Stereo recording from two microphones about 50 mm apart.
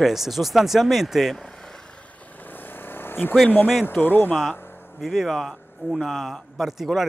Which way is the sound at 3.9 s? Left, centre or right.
Left.